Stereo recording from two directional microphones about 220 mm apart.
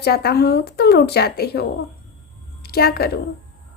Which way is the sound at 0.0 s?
45° left (ahead or behind).